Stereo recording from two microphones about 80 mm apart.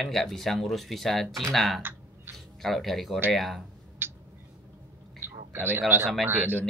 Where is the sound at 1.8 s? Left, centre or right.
Right.